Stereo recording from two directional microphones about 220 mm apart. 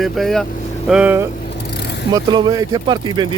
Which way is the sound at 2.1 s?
20° right (ahead or behind).